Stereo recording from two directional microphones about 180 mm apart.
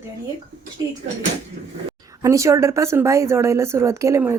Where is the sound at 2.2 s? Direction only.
15° right (ahead or behind).